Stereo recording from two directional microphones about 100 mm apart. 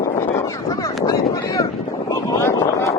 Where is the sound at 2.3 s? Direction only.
30° left (ahead or behind).